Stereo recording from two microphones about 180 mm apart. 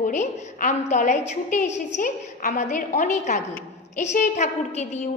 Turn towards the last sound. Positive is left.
turn(degrees=40)  # may be behind; listen again after turning